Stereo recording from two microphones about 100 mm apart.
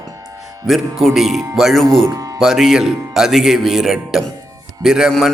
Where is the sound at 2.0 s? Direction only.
35° right (ahead or behind).